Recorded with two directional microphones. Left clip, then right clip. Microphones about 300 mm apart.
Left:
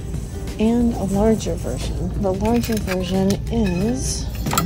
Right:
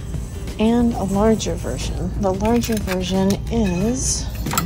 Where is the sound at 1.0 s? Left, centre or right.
Right.